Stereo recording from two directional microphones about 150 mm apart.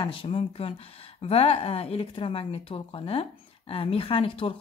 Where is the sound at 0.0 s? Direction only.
35° left (ahead or behind).